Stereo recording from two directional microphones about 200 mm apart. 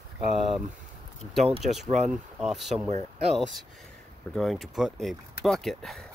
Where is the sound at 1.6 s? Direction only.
Centre (ahead or behind).